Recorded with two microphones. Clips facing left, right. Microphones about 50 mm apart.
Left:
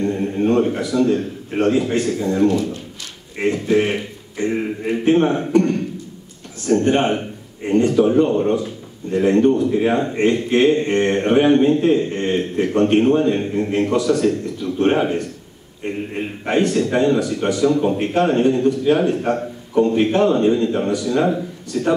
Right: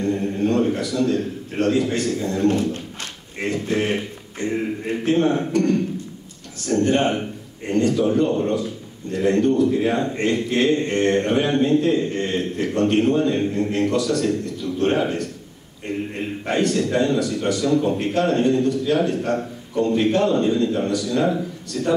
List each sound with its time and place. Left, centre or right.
0.0 s a man's voice: left
3.5 s a man's voice: centre